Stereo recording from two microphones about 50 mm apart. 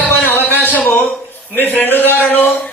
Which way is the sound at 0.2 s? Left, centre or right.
Left.